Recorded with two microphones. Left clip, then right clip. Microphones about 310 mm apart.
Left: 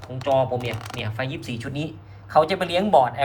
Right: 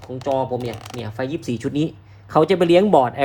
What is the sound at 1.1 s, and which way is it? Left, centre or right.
Speech, centre.